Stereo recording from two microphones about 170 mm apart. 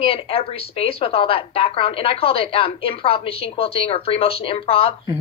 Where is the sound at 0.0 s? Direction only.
30° left (ahead or behind).